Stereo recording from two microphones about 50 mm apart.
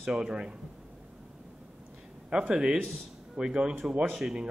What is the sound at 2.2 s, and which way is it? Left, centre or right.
Speech, centre.